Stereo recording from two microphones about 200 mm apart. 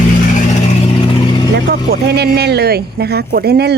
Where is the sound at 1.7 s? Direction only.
50° right (ahead or behind).